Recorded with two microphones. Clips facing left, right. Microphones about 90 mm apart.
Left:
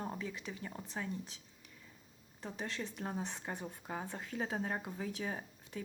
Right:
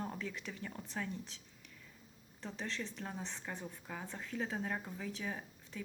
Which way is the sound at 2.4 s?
35° left (ahead or behind).